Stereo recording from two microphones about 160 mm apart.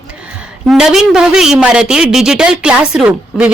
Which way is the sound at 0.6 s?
5° right (ahead or behind).